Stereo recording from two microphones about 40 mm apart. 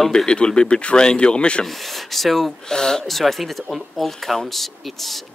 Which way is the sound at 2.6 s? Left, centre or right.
Centre.